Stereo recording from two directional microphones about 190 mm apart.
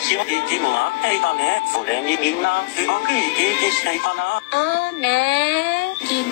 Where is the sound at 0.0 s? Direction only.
70° left (ahead or behind).